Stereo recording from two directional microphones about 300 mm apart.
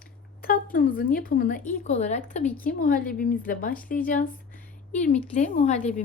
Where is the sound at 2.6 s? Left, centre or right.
Left.